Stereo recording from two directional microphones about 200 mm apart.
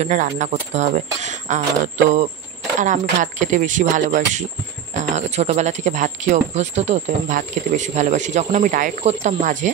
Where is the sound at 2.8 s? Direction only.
40° right (ahead or behind).